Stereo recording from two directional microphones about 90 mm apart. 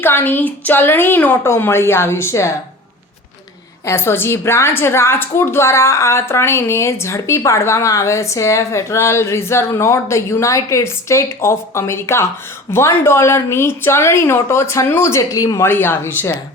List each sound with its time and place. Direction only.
0.0 s a woman's voice: 25° left (ahead or behind)
3.8 s a woman's voice: 25° left (ahead or behind)
15.6 s a woman's voice: 25° left (ahead or behind)